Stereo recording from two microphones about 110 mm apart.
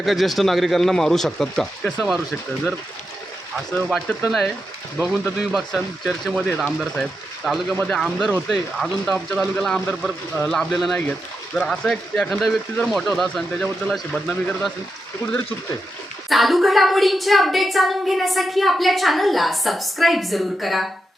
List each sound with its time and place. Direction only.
0.0 s a woman's voice: centre (ahead or behind)
1.8 s speech: 20° left (ahead or behind)
3.7 s a woman's voice: 5° left (ahead or behind)
16.3 s a woman's voice: centre (ahead or behind)